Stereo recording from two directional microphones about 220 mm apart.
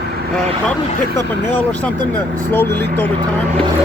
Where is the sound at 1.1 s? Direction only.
10° left (ahead or behind).